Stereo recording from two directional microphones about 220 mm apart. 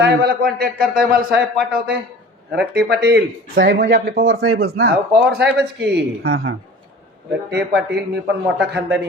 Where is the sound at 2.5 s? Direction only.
50° right (ahead or behind).